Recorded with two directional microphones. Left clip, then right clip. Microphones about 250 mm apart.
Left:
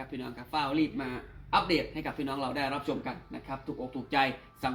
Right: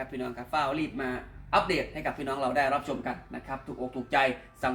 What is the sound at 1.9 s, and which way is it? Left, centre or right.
Speech, centre.